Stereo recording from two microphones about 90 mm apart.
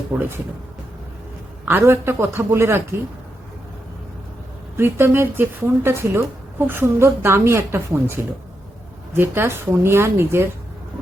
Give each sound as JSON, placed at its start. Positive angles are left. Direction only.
{"t": 0.1, "sound": "a woman's voice", "side_deg": -25}
{"t": 1.6, "sound": "a woman's voice", "side_deg": -25}
{"t": 4.8, "sound": "a woman's voice", "side_deg": -25}